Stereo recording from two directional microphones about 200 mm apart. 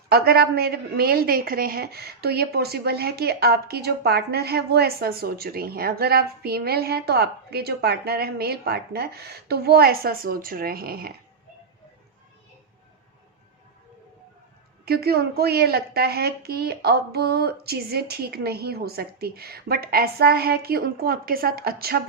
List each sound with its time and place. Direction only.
0.1 s a woman's voice: 50° right (ahead or behind)
14.8 s a woman's voice: 50° right (ahead or behind)